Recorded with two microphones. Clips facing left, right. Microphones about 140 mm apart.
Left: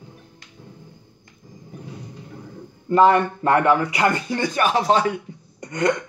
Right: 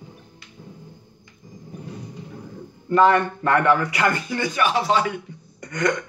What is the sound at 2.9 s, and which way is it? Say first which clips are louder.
Speech: left 1 dB; 20° left (ahead or behind).